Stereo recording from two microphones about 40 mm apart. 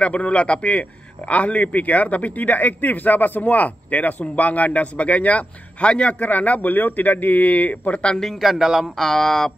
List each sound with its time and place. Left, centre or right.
0.0 s a man's voice: left
8.0 s speech: centre
8.4 s a man's voice: centre
8.9 s speech: centre